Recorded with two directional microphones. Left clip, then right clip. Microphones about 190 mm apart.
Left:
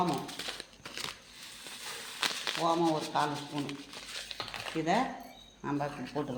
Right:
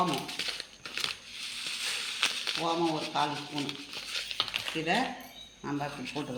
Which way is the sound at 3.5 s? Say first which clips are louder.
Right 3 dB; 15° left (ahead or behind).